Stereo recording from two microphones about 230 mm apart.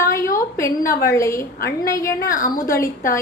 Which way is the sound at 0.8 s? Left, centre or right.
Left.